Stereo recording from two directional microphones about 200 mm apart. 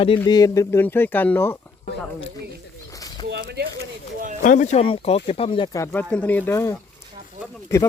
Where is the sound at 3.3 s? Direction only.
55° right (ahead or behind).